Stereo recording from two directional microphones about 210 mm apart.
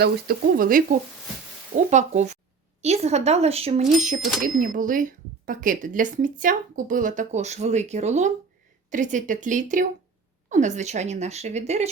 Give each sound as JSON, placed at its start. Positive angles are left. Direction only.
{"t": 0.0, "sound": "speech", "side_deg": -45}
{"t": 4.4, "sound": "speech", "side_deg": -40}